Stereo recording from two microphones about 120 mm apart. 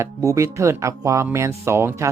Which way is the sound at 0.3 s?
25° right (ahead or behind).